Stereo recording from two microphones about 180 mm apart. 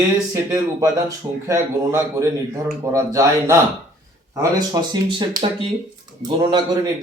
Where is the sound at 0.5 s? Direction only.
15° right (ahead or behind).